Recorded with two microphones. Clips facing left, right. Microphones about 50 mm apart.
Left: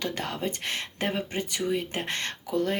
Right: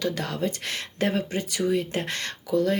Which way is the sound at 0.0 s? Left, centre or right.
Left.